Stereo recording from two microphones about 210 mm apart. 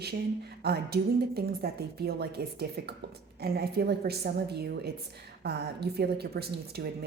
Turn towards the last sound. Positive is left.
turn(degrees=-50)  # may be behind; listen again after turning